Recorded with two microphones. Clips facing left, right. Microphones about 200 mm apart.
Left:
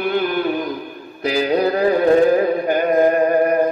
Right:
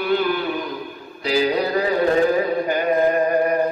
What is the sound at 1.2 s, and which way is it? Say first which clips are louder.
Mantra: left 2 dB; 50° left (ahead or behind).